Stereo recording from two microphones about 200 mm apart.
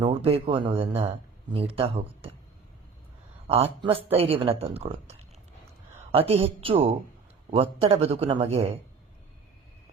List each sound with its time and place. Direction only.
0.0 s speech: 30° right (ahead or behind)
3.4 s a woman's voice: 30° right (ahead or behind)